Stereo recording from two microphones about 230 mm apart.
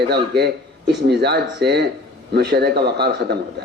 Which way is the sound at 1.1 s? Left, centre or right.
Right.